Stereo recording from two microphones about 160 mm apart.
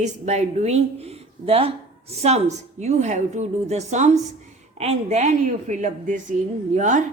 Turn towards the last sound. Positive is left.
turn(degrees=-50)  # may be behind; listen again after turning